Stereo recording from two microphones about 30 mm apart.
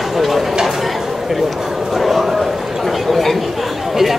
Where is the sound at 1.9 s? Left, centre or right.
Centre.